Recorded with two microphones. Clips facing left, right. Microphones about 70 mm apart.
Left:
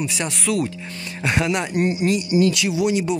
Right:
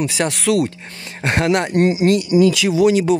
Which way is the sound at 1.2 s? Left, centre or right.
Right.